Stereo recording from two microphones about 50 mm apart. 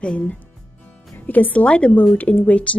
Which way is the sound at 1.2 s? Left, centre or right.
Left.